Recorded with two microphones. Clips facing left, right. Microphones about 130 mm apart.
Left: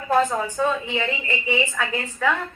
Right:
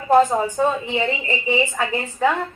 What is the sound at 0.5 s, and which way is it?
A woman's voice, 20° right (ahead or behind).